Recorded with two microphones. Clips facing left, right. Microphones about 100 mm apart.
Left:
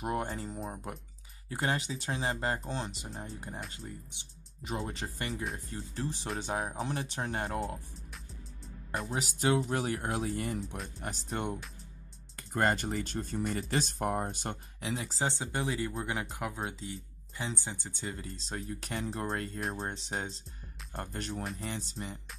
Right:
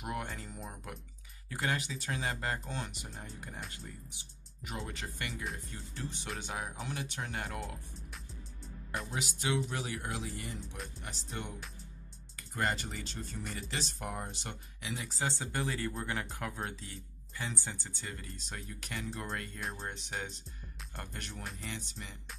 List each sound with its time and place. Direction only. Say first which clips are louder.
0.0 s speech: left 5 dB; 30° left (ahead or behind)
9.1 s speech: left 6 dB; 35° left (ahead or behind)